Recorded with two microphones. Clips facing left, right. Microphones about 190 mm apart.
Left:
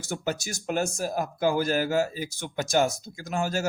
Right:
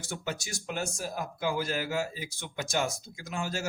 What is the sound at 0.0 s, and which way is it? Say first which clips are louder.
Speech: left 6 dB; 40° left (ahead or behind).